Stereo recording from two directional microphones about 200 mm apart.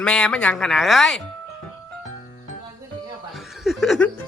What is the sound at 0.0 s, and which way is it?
Speech, 5° left (ahead or behind).